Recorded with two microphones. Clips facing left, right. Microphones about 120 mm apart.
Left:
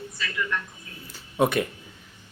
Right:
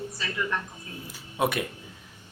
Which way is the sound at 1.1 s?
5° right (ahead or behind).